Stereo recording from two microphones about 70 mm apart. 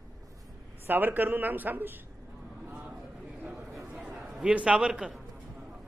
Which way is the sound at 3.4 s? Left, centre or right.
Centre.